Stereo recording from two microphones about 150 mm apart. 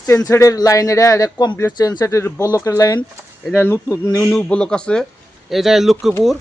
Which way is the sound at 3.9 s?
20° left (ahead or behind).